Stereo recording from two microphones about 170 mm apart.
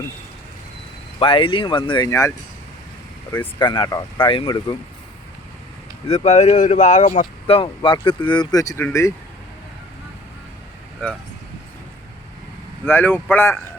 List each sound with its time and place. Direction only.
1.2 s speech: 30° left (ahead or behind)
3.6 s speech: 25° left (ahead or behind)
6.1 s speech: 40° left (ahead or behind)
7.4 s speech: 35° left (ahead or behind); by 9.1 s 15° left (ahead or behind)
12.8 s speech: 10° left (ahead or behind)